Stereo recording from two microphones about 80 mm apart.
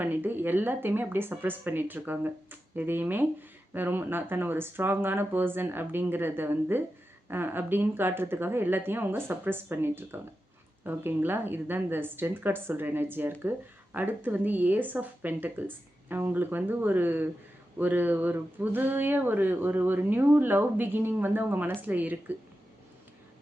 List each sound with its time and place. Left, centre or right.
0.0 s speech: right